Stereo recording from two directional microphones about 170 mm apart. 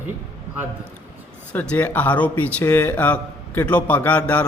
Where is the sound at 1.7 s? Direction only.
10° left (ahead or behind).